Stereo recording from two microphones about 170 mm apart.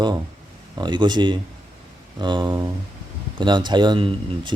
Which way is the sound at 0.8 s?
25° right (ahead or behind).